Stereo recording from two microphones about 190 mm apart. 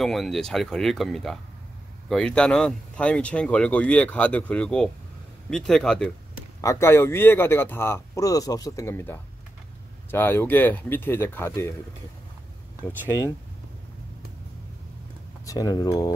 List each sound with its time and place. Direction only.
0.0 s speech: centre (ahead or behind)
6.6 s speech: 15° left (ahead or behind)
12.8 s speech: 15° left (ahead or behind)
15.4 s speech: 20° left (ahead or behind)